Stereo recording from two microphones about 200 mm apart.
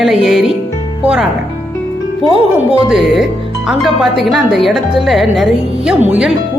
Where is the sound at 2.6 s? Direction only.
5° right (ahead or behind).